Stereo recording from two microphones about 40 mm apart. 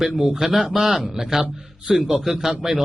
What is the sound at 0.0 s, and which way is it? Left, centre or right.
A man's voice, centre.